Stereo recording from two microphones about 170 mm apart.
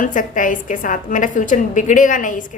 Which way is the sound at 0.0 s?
50° left (ahead or behind).